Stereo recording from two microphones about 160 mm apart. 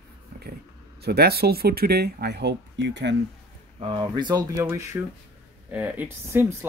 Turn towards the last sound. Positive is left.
turn(degrees=-10)  # may be behind; listen again after turning